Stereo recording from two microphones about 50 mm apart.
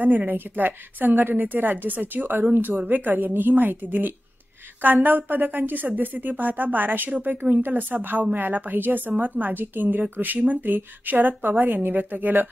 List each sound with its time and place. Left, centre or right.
0.0 s speech: right